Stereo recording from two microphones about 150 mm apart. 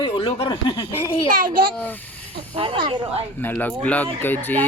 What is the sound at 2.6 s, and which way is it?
Speech, 35° right (ahead or behind).